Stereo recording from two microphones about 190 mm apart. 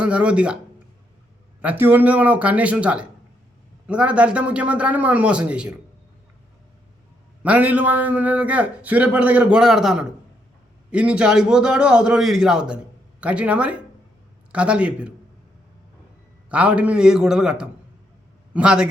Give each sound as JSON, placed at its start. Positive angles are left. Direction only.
{"t": 0.0, "sound": "a man's voice", "side_deg": -5}
{"t": 1.6, "sound": "a man's voice", "side_deg": -10}
{"t": 7.4, "sound": "a man's voice", "side_deg": -10}
{"t": 16.5, "sound": "a man's voice", "side_deg": -5}